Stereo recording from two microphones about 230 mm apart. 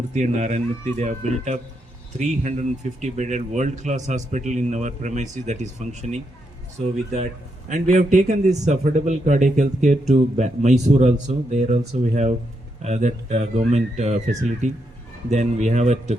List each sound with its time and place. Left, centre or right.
0.1 s a man's voice: right
7.7 s a man's voice: right